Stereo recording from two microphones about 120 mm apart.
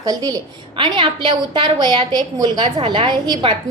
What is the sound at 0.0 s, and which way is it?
A woman's voice, 35° right (ahead or behind).